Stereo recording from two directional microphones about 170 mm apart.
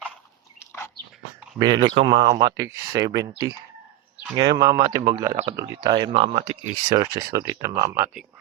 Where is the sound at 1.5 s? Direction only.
25° right (ahead or behind).